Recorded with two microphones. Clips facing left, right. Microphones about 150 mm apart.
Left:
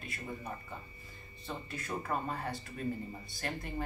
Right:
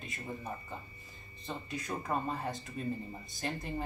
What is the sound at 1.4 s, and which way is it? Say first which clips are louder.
Speech: right 2 dB; 15° right (ahead or behind).